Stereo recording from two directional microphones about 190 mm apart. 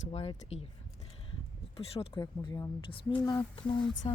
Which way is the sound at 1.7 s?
30° left (ahead or behind).